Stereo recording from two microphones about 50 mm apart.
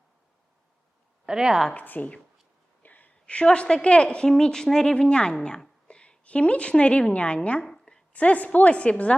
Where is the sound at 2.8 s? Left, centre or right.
Left.